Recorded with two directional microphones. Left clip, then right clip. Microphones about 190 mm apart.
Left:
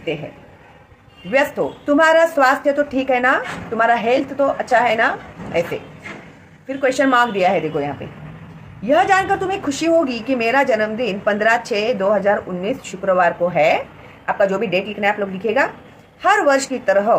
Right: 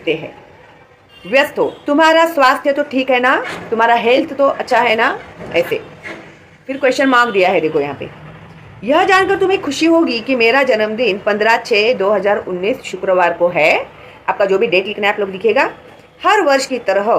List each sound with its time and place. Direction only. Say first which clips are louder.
1.9 s a woman's voice: right 2 dB; 5° left (ahead or behind)